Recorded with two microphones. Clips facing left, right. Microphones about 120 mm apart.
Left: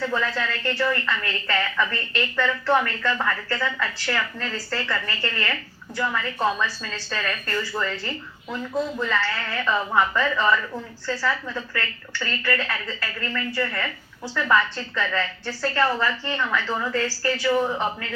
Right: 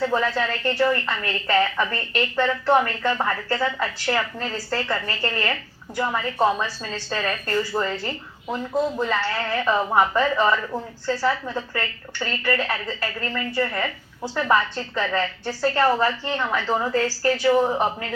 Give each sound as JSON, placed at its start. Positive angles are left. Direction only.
{"t": 0.0, "sound": "a woman's voice", "side_deg": -25}